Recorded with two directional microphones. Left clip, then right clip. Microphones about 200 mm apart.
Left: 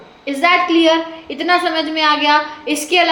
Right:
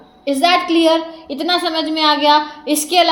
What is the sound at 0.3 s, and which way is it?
A woman's voice, 40° right (ahead or behind).